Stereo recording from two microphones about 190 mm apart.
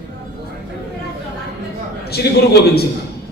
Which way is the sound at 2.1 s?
55° left (ahead or behind).